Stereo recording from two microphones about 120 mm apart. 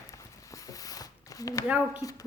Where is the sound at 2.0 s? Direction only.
30° left (ahead or behind).